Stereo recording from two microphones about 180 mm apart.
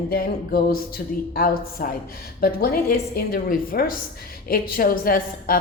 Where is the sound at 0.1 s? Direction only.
55° left (ahead or behind).